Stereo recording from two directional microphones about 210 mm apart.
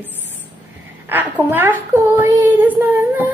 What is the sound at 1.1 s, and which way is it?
A woman's voice, 10° right (ahead or behind).